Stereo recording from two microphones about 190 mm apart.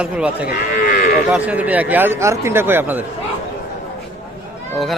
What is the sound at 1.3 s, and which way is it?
A man's voice, 5° right (ahead or behind).